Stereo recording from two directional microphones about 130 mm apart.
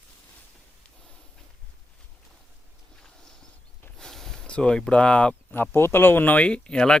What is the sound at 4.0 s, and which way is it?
Speech, 5° left (ahead or behind).